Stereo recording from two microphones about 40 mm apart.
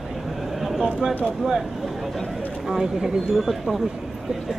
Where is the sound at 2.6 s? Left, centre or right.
Centre.